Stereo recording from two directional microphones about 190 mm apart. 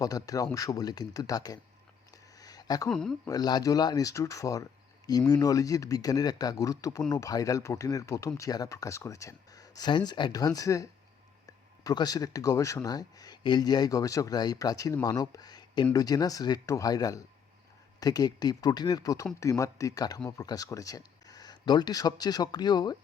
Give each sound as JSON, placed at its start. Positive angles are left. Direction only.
{"t": 0.0, "sound": "speech", "side_deg": 20}
{"t": 2.4, "sound": "a sound", "side_deg": 20}
{"t": 2.9, "sound": "speech", "side_deg": 5}
{"t": 3.2, "sound": "speech", "side_deg": 20}